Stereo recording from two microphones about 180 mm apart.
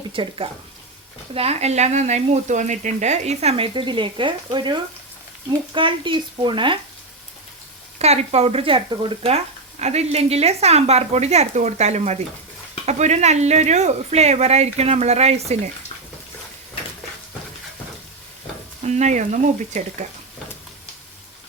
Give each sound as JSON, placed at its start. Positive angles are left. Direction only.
{"t": 0.1, "sound": "speech", "side_deg": -30}
{"t": 7.9, "sound": "speech", "side_deg": -35}
{"t": 18.9, "sound": "speech", "side_deg": -40}